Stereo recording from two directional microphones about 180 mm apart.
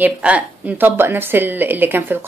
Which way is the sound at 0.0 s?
10° right (ahead or behind).